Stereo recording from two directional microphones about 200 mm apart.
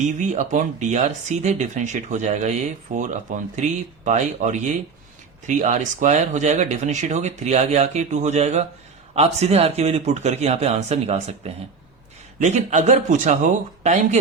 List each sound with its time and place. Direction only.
0.2 s speech: 35° right (ahead or behind)